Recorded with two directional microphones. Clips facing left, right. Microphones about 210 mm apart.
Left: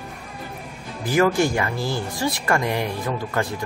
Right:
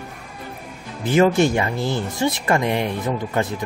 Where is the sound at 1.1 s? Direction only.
25° right (ahead or behind).